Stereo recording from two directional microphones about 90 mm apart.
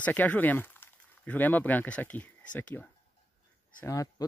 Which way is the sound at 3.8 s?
40° left (ahead or behind).